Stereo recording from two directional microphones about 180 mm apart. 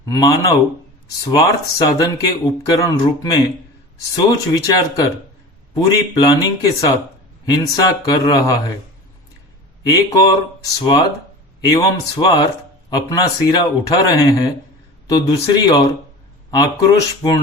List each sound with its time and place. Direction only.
0.0 s speech: 20° left (ahead or behind)
10.6 s speech: 20° left (ahead or behind)